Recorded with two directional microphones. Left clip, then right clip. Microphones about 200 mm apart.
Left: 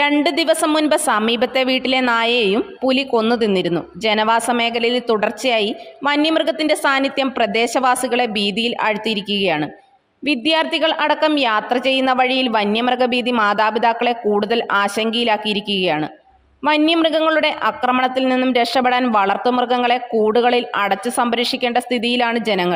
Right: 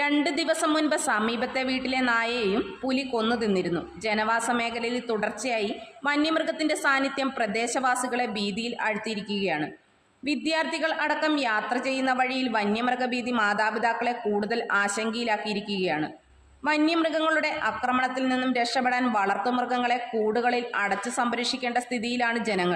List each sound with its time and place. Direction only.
0.0 s a woman's voice: 40° left (ahead or behind)